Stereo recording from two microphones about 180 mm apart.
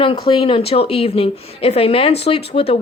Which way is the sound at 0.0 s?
30° left (ahead or behind).